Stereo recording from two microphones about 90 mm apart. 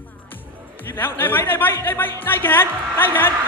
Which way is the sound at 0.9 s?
25° left (ahead or behind).